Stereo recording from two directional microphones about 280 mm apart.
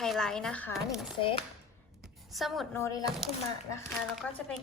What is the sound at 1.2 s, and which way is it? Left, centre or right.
Speech, centre.